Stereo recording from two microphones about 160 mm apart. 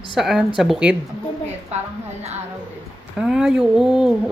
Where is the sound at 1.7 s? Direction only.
45° right (ahead or behind).